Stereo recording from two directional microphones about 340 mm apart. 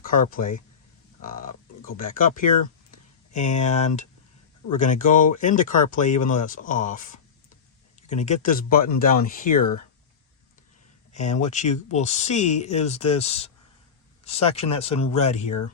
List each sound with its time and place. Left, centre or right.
0.0 s speech: left
11.1 s speech: left